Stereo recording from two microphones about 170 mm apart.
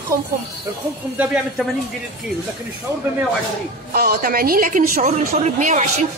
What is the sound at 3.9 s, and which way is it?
A woman's voice, 60° right (ahead or behind).